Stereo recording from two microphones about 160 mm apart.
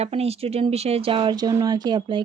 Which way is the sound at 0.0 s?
40° right (ahead or behind).